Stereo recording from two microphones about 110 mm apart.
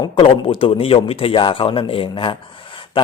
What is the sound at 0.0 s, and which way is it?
A man's voice, 55° left (ahead or behind).